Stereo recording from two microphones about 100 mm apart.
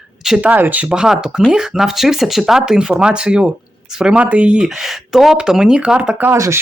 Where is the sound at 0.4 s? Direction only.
15° right (ahead or behind).